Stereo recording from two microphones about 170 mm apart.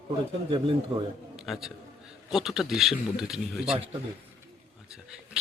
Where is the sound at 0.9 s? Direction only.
30° right (ahead or behind).